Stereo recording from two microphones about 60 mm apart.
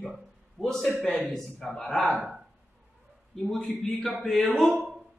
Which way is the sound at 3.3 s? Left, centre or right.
Centre.